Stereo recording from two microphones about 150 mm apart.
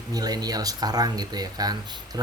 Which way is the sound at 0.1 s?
25° right (ahead or behind).